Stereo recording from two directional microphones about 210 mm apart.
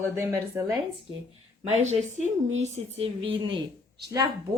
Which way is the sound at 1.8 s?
35° right (ahead or behind).